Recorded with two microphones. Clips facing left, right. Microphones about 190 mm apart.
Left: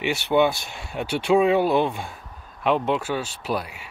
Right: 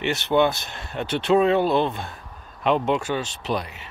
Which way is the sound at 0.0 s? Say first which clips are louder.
Even; 10° left (ahead or behind).